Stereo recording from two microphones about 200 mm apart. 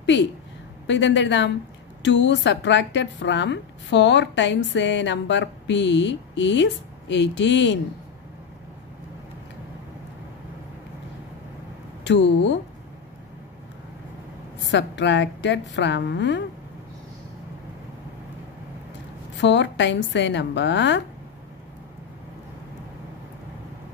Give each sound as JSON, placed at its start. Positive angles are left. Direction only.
{"t": 0.0, "sound": "a woman's voice", "side_deg": 65}
{"t": 12.1, "sound": "a woman's voice", "side_deg": 60}
{"t": 14.6, "sound": "a woman's voice", "side_deg": 65}
{"t": 19.4, "sound": "a woman's voice", "side_deg": 65}